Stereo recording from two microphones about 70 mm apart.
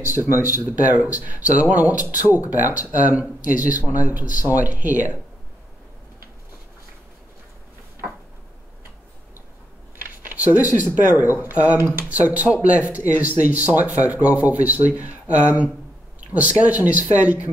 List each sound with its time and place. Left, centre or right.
0.3 s speech: right
0.7 s speech: centre
9.9 s speech: right
11.4 s speech: right